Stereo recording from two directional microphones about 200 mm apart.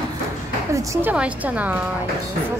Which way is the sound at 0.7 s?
15° right (ahead or behind).